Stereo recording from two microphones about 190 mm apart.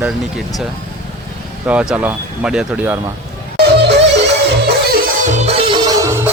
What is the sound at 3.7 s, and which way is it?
Music, 65° right (ahead or behind).